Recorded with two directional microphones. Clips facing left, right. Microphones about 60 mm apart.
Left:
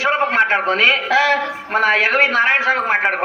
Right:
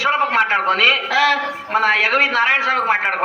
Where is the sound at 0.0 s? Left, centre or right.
Left.